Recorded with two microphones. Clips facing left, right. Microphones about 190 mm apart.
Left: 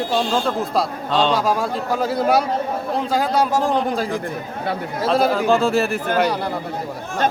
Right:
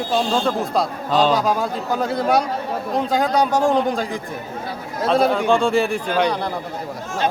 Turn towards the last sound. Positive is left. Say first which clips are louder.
# even
turn(degrees=5)  # may be behind; listen again after turning